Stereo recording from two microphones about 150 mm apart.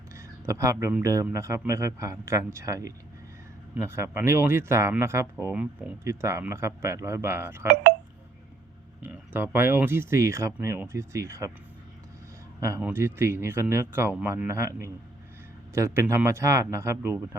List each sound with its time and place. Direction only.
0.2 s a sound: 20° right (ahead or behind)
1.0 s a man's voice: 20° right (ahead or behind)
9.0 s speech: 15° right (ahead or behind)
12.5 s speech: 20° right (ahead or behind)